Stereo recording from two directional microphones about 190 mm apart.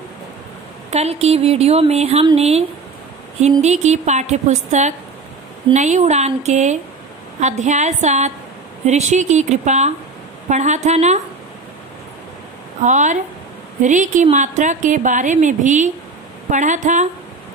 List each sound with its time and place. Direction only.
0.8 s a woman's voice: 35° right (ahead or behind)
3.6 s a woman's voice: 35° right (ahead or behind)
12.8 s a woman's voice: 40° right (ahead or behind)